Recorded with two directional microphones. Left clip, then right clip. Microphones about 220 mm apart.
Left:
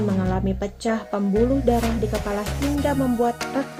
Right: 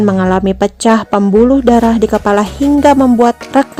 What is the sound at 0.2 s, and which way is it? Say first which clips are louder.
A woman's voice: right 14 dB; 55° right (ahead or behind).